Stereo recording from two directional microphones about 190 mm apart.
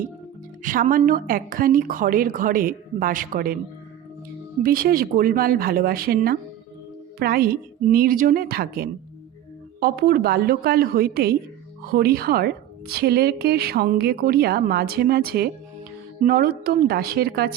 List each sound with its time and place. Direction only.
0.6 s a woman's voice: 45° right (ahead or behind)
4.6 s a woman's voice: 50° right (ahead or behind)